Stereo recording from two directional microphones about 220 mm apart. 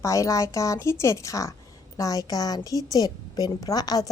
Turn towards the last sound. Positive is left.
turn(degrees=15)  # may be behind; listen again after turning